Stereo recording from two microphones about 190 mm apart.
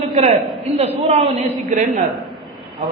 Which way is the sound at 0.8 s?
35° right (ahead or behind).